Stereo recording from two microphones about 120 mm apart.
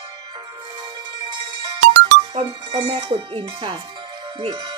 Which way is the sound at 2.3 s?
50° right (ahead or behind).